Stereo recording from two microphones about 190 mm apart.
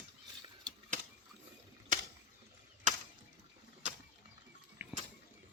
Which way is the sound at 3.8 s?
40° right (ahead or behind).